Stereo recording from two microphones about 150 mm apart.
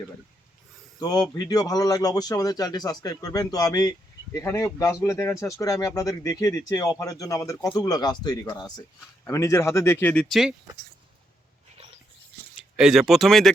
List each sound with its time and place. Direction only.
0.9 s speech: 25° left (ahead or behind); by 10.5 s centre (ahead or behind)
12.7 s speech: 5° right (ahead or behind)